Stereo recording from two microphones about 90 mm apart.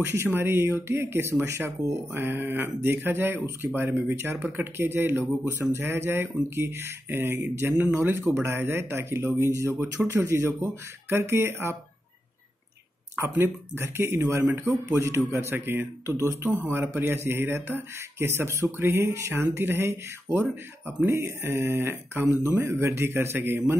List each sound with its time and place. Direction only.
0.0 s speech: 25° right (ahead or behind)
13.3 s speech: 25° right (ahead or behind)